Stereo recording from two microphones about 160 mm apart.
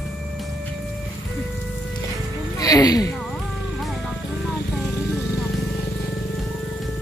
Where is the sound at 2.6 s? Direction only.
20° left (ahead or behind).